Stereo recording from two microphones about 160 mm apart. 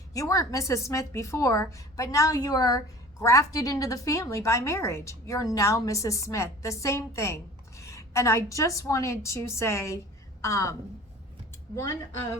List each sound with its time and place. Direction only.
0.1 s a woman's voice: 20° left (ahead or behind)
11.8 s a woman's voice: 15° left (ahead or behind)